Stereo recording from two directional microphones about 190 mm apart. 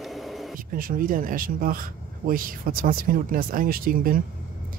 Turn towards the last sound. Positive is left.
turn(degrees=-50)  # may be behind; listen again after turning